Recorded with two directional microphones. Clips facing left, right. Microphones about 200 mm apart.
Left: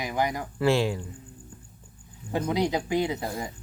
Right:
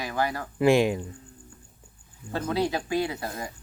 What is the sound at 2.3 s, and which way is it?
Speech, 15° left (ahead or behind).